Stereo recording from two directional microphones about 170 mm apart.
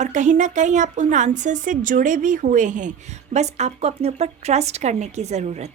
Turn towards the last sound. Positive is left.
turn(degrees=-40)  # may be behind; listen again after turning